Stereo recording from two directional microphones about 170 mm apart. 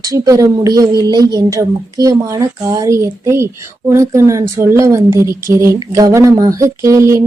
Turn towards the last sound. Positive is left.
turn(degrees=-15)  # may be behind; listen again after turning